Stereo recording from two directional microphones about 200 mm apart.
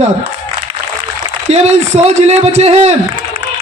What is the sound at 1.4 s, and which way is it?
A man's voice, 35° right (ahead or behind).